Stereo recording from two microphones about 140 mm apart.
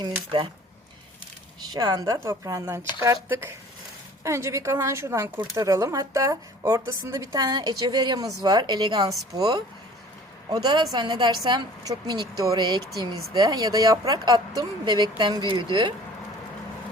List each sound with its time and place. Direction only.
1.6 s a woman's voice: 30° right (ahead or behind)